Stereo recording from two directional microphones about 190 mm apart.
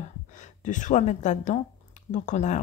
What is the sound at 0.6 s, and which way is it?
Speech, 40° left (ahead or behind).